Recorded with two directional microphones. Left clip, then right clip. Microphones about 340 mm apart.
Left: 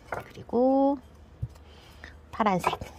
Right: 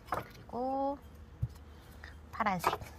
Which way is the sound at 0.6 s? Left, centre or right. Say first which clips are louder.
Left 11 dB; left.